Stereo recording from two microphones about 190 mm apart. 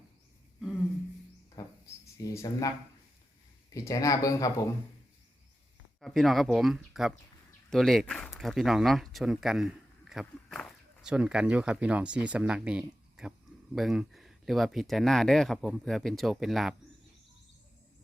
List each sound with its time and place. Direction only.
1.6 s a sound: 15° left (ahead or behind)
2.3 s speech: 15° left (ahead or behind)
6.0 s speech: centre (ahead or behind)